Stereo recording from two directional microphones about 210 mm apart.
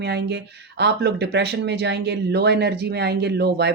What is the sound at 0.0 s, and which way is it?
Speech, 50° right (ahead or behind).